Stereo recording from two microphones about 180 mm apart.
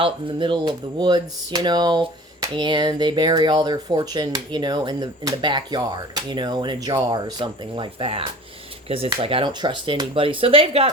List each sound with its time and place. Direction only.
0.0 s speech: 30° right (ahead or behind)